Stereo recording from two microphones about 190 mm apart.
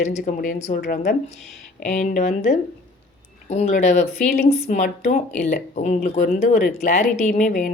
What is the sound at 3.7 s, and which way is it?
Speech, 40° left (ahead or behind).